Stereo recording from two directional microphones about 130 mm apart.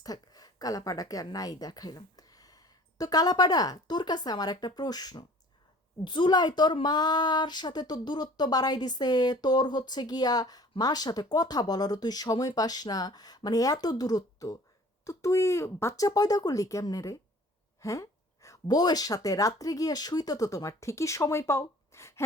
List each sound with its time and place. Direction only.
0.0 s a woman's voice: 30° left (ahead or behind)